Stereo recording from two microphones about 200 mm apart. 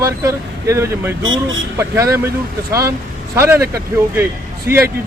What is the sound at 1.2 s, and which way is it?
Speech, 75° right (ahead or behind).